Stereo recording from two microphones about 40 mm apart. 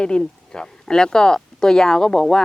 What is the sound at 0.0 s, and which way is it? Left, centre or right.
Speech, left.